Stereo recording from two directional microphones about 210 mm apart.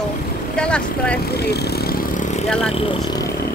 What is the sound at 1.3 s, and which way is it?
Vehicle, 50° left (ahead or behind).